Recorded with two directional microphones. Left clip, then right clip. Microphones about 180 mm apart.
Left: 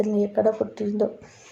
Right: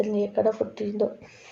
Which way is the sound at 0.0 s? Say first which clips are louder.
Left 2 dB; 30° left (ahead or behind).